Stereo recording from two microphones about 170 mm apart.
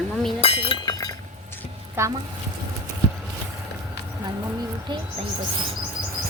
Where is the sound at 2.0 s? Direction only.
15° right (ahead or behind).